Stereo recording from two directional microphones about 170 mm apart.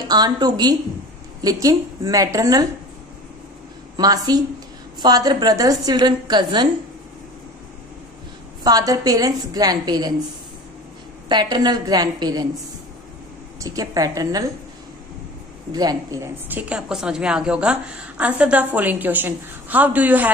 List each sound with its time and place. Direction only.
0.1 s a woman's voice: 25° right (ahead or behind)
3.9 s a woman's voice: 20° right (ahead or behind)
8.6 s a woman's voice: 20° right (ahead or behind)
11.2 s a woman's voice: 25° right (ahead or behind)
13.6 s a woman's voice: 20° right (ahead or behind)
15.7 s a woman's voice: 20° right (ahead or behind)